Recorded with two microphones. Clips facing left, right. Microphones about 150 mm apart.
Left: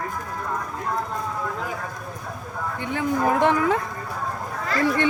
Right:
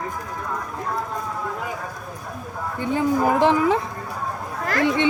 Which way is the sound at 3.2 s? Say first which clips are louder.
Left 1 dB; 5° right (ahead or behind).